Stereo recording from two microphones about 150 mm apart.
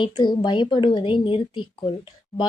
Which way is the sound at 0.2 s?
30° left (ahead or behind).